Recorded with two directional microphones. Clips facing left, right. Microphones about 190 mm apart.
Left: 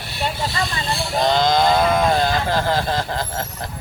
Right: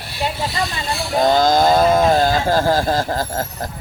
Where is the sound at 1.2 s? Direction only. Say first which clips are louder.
Right 3 dB; 45° right (ahead or behind).